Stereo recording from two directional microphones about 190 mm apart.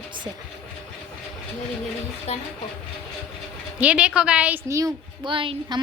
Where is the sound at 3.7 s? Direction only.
5° right (ahead or behind); by 5.8 s 25° right (ahead or behind).